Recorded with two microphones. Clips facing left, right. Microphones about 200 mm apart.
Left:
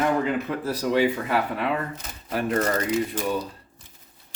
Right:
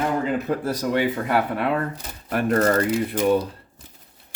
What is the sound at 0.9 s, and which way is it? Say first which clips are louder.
Speech: even; 55° right (ahead or behind).